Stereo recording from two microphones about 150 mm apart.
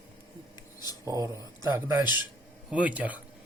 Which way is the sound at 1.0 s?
20° right (ahead or behind).